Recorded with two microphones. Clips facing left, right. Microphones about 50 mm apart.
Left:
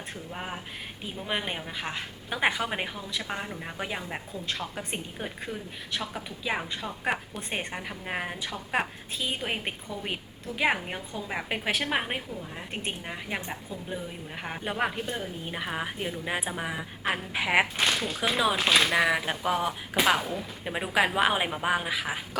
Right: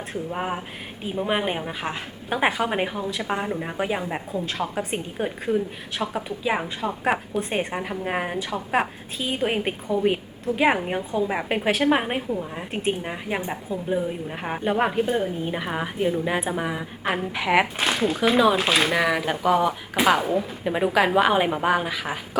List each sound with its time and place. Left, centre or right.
0.3 s a woman's voice: centre
4.6 s a woman's voice: right
5.1 s a woman's voice: centre
17.8 s a woman's voice: centre